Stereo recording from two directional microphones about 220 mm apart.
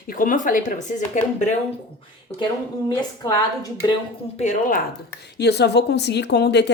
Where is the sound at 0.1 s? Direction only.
40° left (ahead or behind).